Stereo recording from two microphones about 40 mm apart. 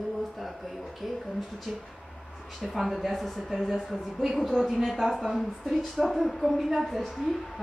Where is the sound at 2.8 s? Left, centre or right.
Centre.